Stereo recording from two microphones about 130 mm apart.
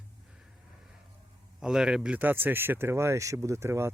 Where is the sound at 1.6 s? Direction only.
5° right (ahead or behind).